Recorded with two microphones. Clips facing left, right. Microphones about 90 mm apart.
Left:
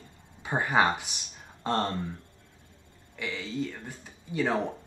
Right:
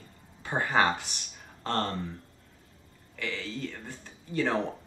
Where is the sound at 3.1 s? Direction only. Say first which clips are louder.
Left 3 dB; 15° left (ahead or behind).